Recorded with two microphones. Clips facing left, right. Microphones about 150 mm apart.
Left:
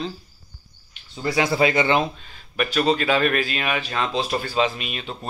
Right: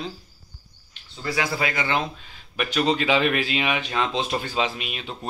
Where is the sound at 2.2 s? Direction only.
15° right (ahead or behind).